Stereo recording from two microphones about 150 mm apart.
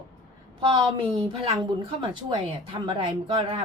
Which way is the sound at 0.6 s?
35° right (ahead or behind).